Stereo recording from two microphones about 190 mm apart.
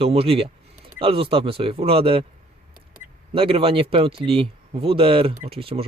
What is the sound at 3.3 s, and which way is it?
Speech, 30° right (ahead or behind).